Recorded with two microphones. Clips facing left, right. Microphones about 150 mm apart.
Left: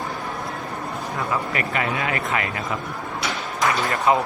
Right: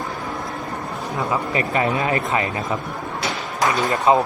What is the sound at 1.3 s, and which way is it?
Speech, 30° right (ahead or behind).